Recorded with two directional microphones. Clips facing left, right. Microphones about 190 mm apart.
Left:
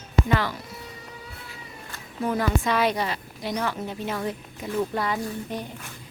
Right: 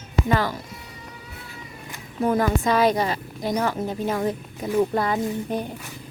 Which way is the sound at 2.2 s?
45° right (ahead or behind).